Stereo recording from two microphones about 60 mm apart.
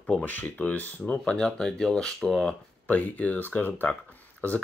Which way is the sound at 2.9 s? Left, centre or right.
Left.